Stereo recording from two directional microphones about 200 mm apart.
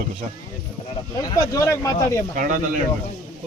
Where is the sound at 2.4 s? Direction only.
40° right (ahead or behind).